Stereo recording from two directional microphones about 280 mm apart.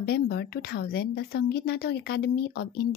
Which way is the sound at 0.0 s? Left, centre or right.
Left.